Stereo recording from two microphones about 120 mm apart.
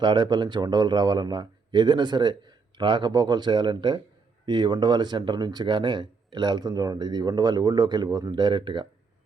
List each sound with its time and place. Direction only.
0.0 s speech: 40° right (ahead or behind)